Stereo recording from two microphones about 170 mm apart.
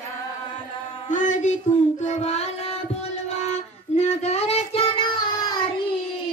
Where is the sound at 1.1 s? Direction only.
50° left (ahead or behind).